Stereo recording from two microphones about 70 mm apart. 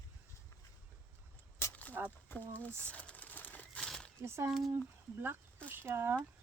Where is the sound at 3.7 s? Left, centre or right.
Centre.